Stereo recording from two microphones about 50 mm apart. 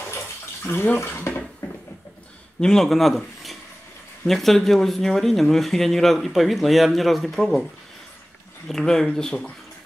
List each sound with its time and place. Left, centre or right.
0.9 s speech: left
2.6 s speech: centre
8.6 s speech: centre